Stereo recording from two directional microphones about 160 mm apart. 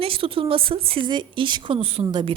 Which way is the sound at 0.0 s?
35° right (ahead or behind).